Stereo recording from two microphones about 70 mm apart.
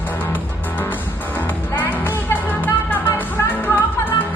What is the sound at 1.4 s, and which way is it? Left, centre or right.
Music, left.